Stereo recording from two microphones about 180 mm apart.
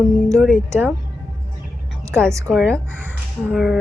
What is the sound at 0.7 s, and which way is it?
Speech, 10° right (ahead or behind).